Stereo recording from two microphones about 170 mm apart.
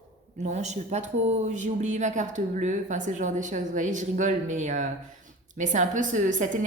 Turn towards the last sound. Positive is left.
turn(degrees=-50)  # may be behind; listen again after turning